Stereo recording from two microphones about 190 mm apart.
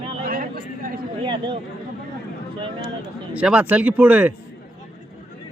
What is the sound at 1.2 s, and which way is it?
Speech, 25° right (ahead or behind).